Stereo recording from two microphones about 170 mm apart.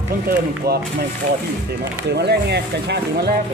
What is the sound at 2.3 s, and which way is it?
Speech, 75° right (ahead or behind).